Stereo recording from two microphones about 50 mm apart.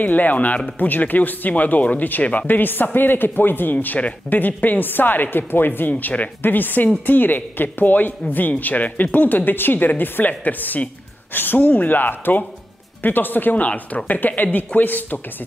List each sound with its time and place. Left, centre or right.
0.0 s speech: left
3.7 s speech: left